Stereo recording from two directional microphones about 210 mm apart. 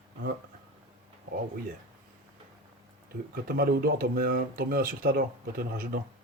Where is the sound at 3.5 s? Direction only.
45° right (ahead or behind).